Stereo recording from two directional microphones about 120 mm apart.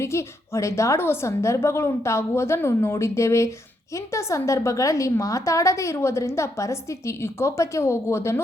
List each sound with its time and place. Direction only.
0.0 s a woman's voice: 25° left (ahead or behind)